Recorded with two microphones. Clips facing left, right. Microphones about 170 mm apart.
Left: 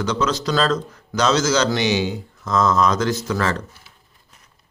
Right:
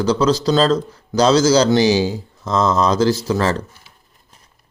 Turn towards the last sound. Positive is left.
turn(degrees=-30)  # may be behind; listen again after turning